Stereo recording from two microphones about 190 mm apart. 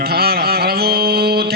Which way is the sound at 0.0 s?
55° right (ahead or behind).